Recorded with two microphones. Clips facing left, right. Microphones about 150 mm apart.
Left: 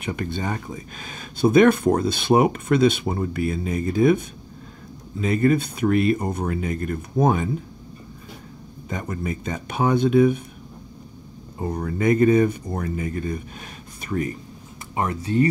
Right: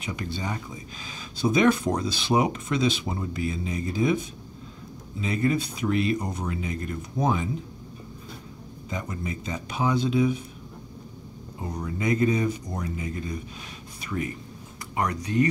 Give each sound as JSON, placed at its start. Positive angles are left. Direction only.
{"t": 0.0, "sound": "speech", "side_deg": 55}
{"t": 5.2, "sound": "speech", "side_deg": 50}
{"t": 8.9, "sound": "speech", "side_deg": 55}
{"t": 11.7, "sound": "speech", "side_deg": 55}
{"t": 14.0, "sound": "speech", "side_deg": 40}
{"t": 15.0, "sound": "speech", "side_deg": 30}